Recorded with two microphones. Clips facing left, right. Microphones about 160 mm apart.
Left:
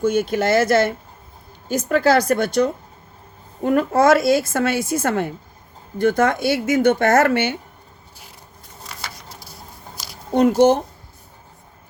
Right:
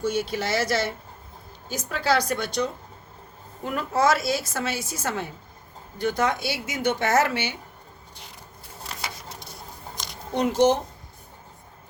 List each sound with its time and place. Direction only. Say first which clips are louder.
0.0 s a woman's voice: left 7 dB; 50° left (ahead or behind)
9.9 s a sound: even; 5° left (ahead or behind)
10.3 s a woman's voice: left 6 dB; 50° left (ahead or behind)